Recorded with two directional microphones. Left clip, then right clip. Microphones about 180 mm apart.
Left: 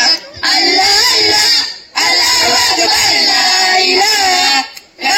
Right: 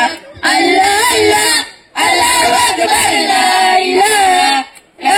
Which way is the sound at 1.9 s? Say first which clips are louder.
Right 1 dB; 40° right (ahead or behind).